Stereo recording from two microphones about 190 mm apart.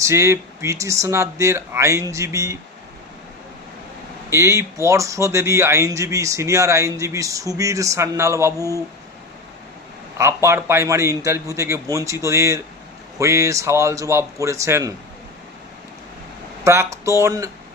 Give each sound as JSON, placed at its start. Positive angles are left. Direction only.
{"t": 0.0, "sound": "speech", "side_deg": -15}
{"t": 4.3, "sound": "speech", "side_deg": -15}
{"t": 10.2, "sound": "speech", "side_deg": -15}
{"t": 16.6, "sound": "speech", "side_deg": -15}